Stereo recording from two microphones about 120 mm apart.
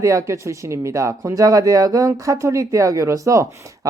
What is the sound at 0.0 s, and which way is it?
Speech, 25° right (ahead or behind).